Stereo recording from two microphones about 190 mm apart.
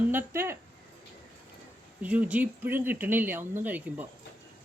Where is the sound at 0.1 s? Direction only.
10° right (ahead or behind).